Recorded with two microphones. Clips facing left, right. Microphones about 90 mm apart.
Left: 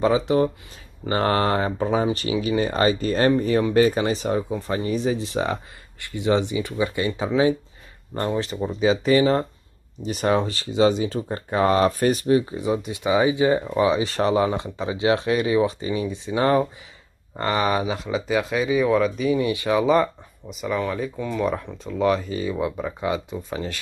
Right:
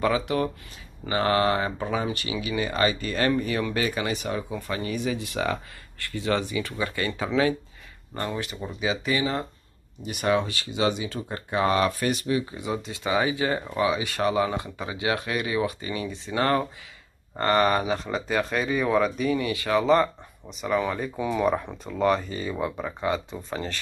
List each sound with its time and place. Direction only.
0.0 s speech: 25° left (ahead or behind)
1.0 s speech: 40° left (ahead or behind); by 7.2 s 20° left (ahead or behind)
8.2 s speech: 30° left (ahead or behind)
12.5 s speech: 25° left (ahead or behind)
13.7 s speech: 30° left (ahead or behind)
17.4 s speech: centre (ahead or behind)
19.3 s speech: 20° left (ahead or behind); by 23.8 s 5° left (ahead or behind)